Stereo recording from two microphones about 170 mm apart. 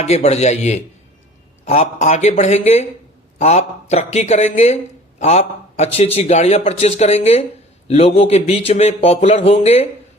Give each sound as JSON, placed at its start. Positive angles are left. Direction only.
{"t": 0.0, "sound": "a man's voice", "side_deg": 40}